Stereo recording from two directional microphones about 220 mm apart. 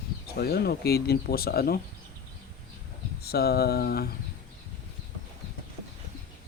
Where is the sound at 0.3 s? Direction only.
45° left (ahead or behind).